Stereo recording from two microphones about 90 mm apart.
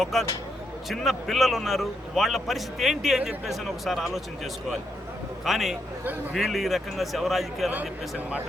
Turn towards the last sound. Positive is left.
turn(degrees=0)  # may be behind; listen again after turning